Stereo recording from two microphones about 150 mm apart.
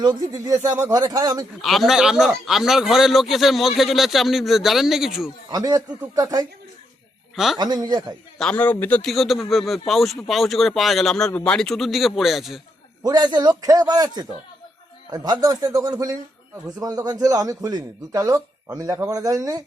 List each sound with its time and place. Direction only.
0.0 s a man's voice: 25° right (ahead or behind)
1.6 s a man's voice: centre (ahead or behind)
5.5 s a man's voice: 25° right (ahead or behind)
7.3 s a man's voice: centre (ahead or behind)
7.6 s a man's voice: 25° right (ahead or behind)
8.4 s a man's voice: 10° left (ahead or behind)
13.0 s a man's voice: 25° right (ahead or behind)